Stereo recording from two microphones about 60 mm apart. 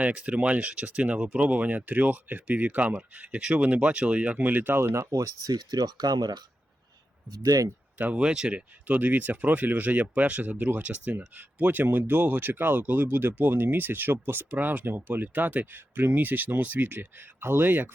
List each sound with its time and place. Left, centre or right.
0.0 s speech: right
4.9 s speech: right
7.3 s speech: right
7.9 s speech: right
8.2 s speech: centre; by 17.8 s right